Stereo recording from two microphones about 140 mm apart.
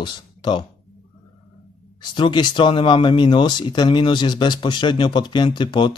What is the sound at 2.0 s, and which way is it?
Speech, 35° left (ahead or behind).